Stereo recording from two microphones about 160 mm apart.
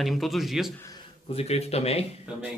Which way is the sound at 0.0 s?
Centre (ahead or behind).